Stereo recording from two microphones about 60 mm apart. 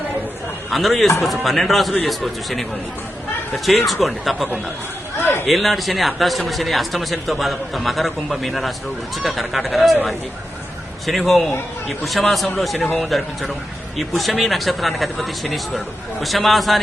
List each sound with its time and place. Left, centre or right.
0.7 s a man's voice: centre
3.7 s a man's voice: centre
5.2 s a sound: left
5.5 s a man's voice: centre